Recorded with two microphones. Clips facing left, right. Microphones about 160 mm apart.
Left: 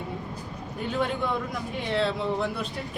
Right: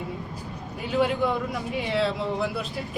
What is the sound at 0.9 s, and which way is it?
A man's voice, 5° right (ahead or behind).